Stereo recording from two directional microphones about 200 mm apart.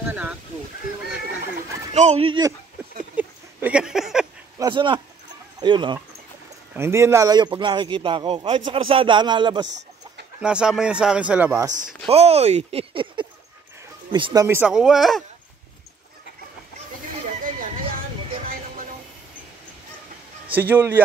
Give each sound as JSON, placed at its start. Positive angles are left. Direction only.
{"t": 0.1, "sound": "a sound", "side_deg": -5}
{"t": 2.0, "sound": "a man's voice", "side_deg": -30}
{"t": 3.2, "sound": "a sound", "side_deg": -5}
{"t": 4.6, "sound": "a man's voice", "side_deg": -25}
{"t": 6.7, "sound": "a man's voice", "side_deg": -15}
{"t": 9.7, "sound": "chicken", "side_deg": -60}
{"t": 10.4, "sound": "speech", "side_deg": -5}
{"t": 12.1, "sound": "speech", "side_deg": -30}
{"t": 17.3, "sound": "a sound", "side_deg": -40}
{"t": 20.5, "sound": "speech", "side_deg": -10}